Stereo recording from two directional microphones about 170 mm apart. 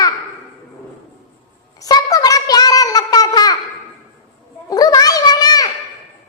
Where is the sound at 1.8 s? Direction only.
20° left (ahead or behind).